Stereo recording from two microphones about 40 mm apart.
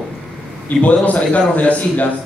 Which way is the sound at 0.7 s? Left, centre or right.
Left.